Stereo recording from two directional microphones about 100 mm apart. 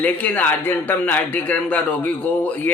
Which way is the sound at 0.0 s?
15° left (ahead or behind).